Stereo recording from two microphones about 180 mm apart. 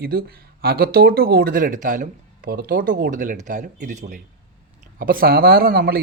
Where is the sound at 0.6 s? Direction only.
60° right (ahead or behind).